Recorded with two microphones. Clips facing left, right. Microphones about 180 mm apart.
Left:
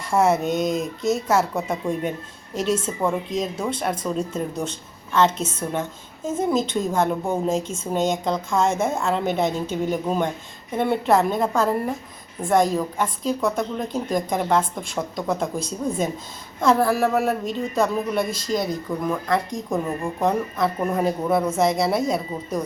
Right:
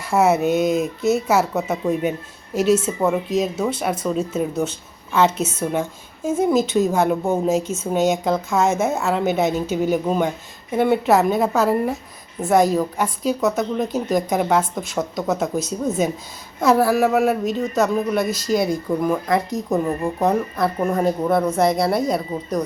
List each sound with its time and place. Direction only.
0.0 s a woman's voice: 5° right (ahead or behind)